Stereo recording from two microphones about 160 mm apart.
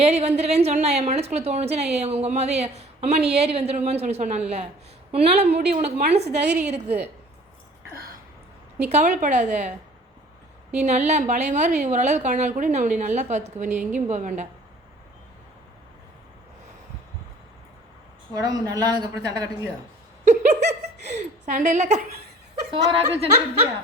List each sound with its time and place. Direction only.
0.0 s a woman's voice: 45° right (ahead or behind)
6.1 s a woman's voice: 90° right
6.6 s a woman's voice: 45° right (ahead or behind)
8.9 s a woman's voice: 45° right (ahead or behind)
10.8 s a woman's voice: 45° right (ahead or behind)
18.3 s a woman's voice: 20° right (ahead or behind)
20.2 s a woman's voice: 50° right (ahead or behind)
22.7 s speech: 30° right (ahead or behind)